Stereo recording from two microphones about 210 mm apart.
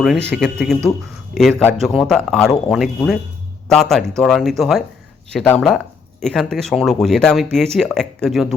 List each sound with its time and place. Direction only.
0.0 s speech: centre (ahead or behind)